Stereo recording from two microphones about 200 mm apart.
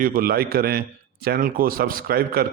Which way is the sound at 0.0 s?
45° right (ahead or behind).